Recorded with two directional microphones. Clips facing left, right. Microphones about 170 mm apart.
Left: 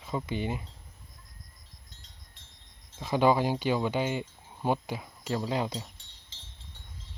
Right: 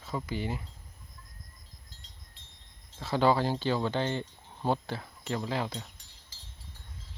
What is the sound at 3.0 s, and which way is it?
Speech, 15° left (ahead or behind).